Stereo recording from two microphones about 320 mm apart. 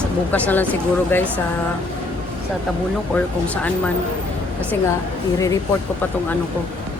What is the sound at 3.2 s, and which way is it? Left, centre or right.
Speech, centre.